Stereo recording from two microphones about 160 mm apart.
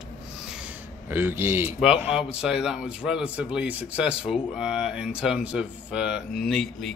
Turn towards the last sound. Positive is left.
turn(degrees=0)  # may be behind; listen again after turning